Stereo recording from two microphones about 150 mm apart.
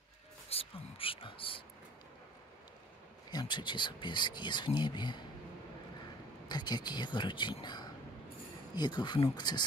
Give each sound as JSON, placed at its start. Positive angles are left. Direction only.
{"t": 0.5, "sound": "whispering", "side_deg": 40}
{"t": 3.3, "sound": "speech", "side_deg": 30}
{"t": 6.5, "sound": "speech", "side_deg": 30}